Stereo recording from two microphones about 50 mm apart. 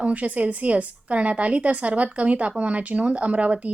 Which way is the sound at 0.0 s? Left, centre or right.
Right.